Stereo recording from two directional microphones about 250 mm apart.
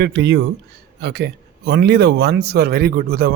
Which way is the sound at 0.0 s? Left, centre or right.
Right.